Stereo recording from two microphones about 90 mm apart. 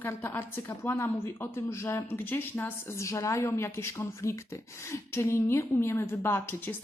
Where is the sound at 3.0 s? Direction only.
35° left (ahead or behind).